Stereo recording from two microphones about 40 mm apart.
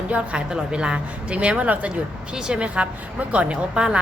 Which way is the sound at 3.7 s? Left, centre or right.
Right.